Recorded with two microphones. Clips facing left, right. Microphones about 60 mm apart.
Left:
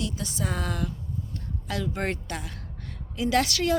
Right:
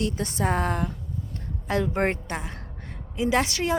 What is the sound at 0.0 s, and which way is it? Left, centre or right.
A woman's voice, right.